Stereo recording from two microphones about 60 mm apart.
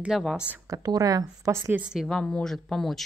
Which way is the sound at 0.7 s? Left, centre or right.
Right.